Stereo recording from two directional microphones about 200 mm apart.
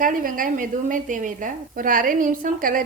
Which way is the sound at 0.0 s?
45° right (ahead or behind).